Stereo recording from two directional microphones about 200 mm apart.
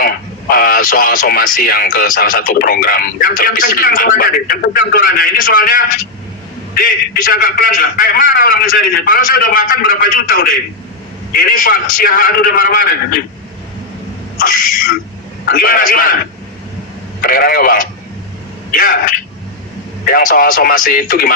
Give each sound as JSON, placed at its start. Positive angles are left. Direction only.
{"t": 0.5, "sound": "speech", "side_deg": 45}
{"t": 14.3, "sound": "speech", "side_deg": 45}
{"t": 17.2, "sound": "speech", "side_deg": 45}